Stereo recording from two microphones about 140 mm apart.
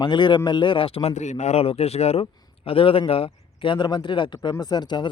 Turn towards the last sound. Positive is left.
turn(degrees=30)  # may be behind; listen again after turning